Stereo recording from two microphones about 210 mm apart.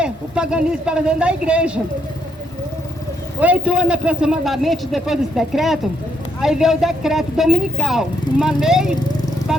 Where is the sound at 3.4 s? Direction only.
5° right (ahead or behind).